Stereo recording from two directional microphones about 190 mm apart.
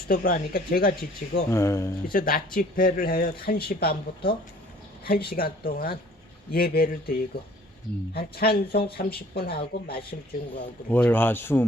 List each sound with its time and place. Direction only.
0.1 s speech: 50° left (ahead or behind)
1.5 s speech: 15° left (ahead or behind)
2.0 s speech: 50° left (ahead or behind)
10.8 s speech: 10° left (ahead or behind)